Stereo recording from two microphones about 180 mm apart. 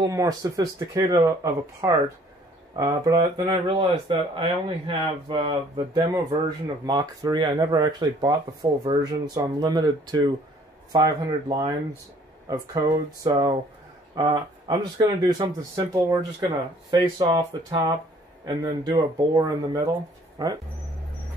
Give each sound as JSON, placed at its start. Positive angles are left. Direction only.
{"t": 0.0, "sound": "speech", "side_deg": -20}